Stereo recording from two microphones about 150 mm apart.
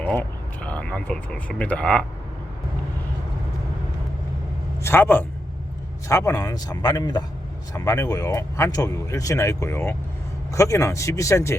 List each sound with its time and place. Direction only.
0.0 s speech: 10° left (ahead or behind)
4.8 s a man's voice: 15° left (ahead or behind)